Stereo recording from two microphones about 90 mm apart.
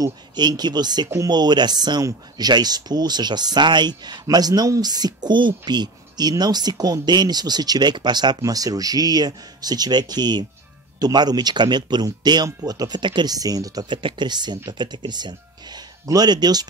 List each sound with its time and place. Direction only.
0.0 s speech: 50° right (ahead or behind)
8.4 s speech: 40° right (ahead or behind)
14.0 s speech: 60° right (ahead or behind)